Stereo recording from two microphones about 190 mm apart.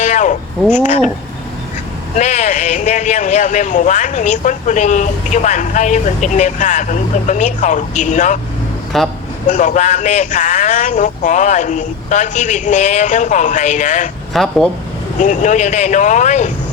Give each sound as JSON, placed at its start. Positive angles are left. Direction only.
{"t": 0.0, "sound": "a sound", "side_deg": 40}
{"t": 0.7, "sound": "speech", "side_deg": 40}
{"t": 2.1, "sound": "speech", "side_deg": 40}
{"t": 8.9, "sound": "speech", "side_deg": 0}
{"t": 9.5, "sound": "speech", "side_deg": 40}
{"t": 14.3, "sound": "speech", "side_deg": 0}
{"t": 15.2, "sound": "speech", "side_deg": 40}